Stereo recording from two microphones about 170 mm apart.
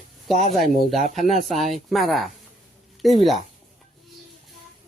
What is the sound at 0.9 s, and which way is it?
Speech, 45° left (ahead or behind).